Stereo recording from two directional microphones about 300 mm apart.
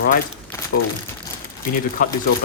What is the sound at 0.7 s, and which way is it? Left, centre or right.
Speech, left.